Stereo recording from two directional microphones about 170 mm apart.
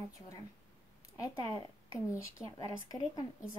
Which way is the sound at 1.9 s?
20° left (ahead or behind).